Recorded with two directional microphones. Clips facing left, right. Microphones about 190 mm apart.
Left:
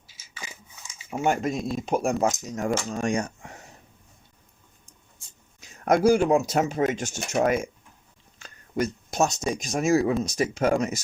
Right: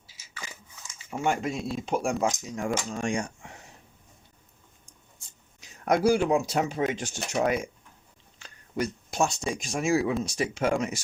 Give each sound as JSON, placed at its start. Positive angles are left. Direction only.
{"t": 1.2, "sound": "speech", "side_deg": 45}
{"t": 5.5, "sound": "speech", "side_deg": 45}